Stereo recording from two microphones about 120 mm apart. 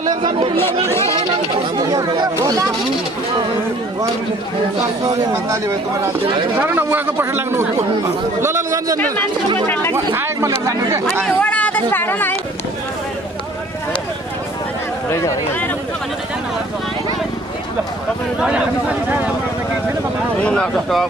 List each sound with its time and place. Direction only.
0.7 s speech: 20° left (ahead or behind)
1.8 s speech: 30° right (ahead or behind)
5.3 s a man's voice: 25° right (ahead or behind)
9.7 s speech: 20° left (ahead or behind)
9.9 s speech: 20° right (ahead or behind)
11.2 s speech: 10° left (ahead or behind)
15.0 s speech: 25° left (ahead or behind)
18.4 s a man's voice: 10° right (ahead or behind)
20.4 s speech: 10° left (ahead or behind)